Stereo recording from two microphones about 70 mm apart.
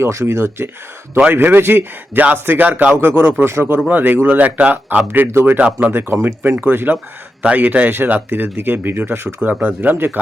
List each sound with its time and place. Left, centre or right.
0.0 s speech: right
5.5 s speech: centre
5.9 s speech: right